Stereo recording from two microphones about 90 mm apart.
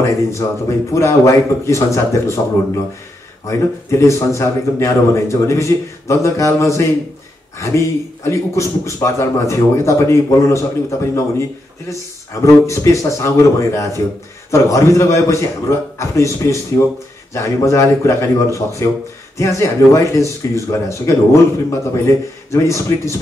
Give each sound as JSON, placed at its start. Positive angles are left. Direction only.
{"t": 0.0, "sound": "speech", "side_deg": 30}
{"t": 12.4, "sound": "speech", "side_deg": 35}